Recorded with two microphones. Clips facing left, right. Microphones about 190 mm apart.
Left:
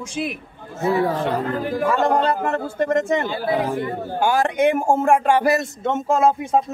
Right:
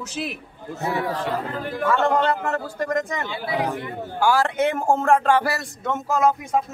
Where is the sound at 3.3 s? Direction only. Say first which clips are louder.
Left 5 dB; 45° left (ahead or behind).